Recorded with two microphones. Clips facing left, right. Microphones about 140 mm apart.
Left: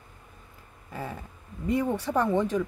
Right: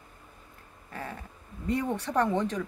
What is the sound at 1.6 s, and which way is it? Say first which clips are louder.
Speech: left 3 dB; 5° left (ahead or behind).